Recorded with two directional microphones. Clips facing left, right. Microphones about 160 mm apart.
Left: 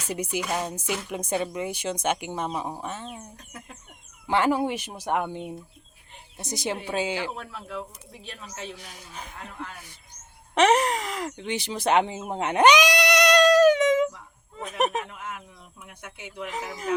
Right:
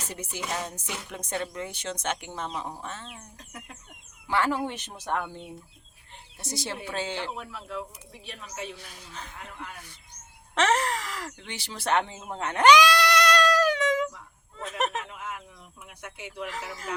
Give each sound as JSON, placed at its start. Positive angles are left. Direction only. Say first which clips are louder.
{"t": 0.1, "sound": "speech", "louder": "left 7 dB", "side_deg": 10}
{"t": 3.3, "sound": "speech", "louder": "left 1 dB", "side_deg": 0}
{"t": 4.3, "sound": "speech", "louder": "left 4 dB", "side_deg": 20}
{"t": 7.3, "sound": "speech", "louder": "left 1 dB", "side_deg": 0}
{"t": 10.5, "sound": "speech", "louder": "left 5 dB", "side_deg": 15}
{"t": 15.0, "sound": "speech", "louder": "left 1 dB", "side_deg": 0}
{"t": 16.5, "sound": "speech", "louder": "left 4 dB", "side_deg": 15}